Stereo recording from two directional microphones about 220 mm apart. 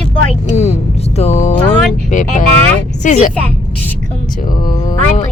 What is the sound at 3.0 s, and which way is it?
Speech, 35° left (ahead or behind).